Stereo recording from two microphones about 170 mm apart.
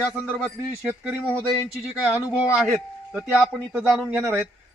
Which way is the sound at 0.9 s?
10° right (ahead or behind).